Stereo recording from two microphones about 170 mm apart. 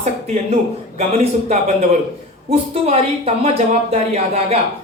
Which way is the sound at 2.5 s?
40° right (ahead or behind).